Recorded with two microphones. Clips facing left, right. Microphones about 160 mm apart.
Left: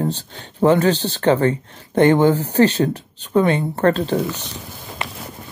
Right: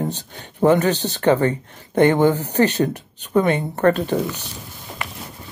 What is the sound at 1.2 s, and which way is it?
Speech, 50° left (ahead or behind).